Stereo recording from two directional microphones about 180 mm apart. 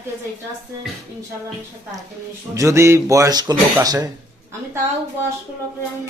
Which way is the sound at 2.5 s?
15° right (ahead or behind).